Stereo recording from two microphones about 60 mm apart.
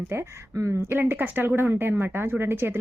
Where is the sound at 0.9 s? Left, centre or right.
Right.